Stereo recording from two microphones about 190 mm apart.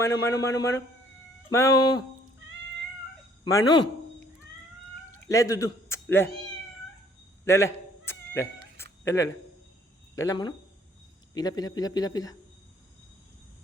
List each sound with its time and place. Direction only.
0.0 s a man's voice: 15° left (ahead or behind)
3.4 s speech: 20° left (ahead or behind)
5.3 s speech: 15° left (ahead or behind)
7.4 s cat: 15° left (ahead or behind)
8.8 s a sound: 15° left (ahead or behind)
10.2 s speech: 20° left (ahead or behind)